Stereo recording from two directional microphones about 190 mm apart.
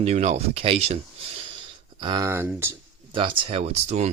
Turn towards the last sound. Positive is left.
turn(degrees=-35)  # may be behind; listen again after turning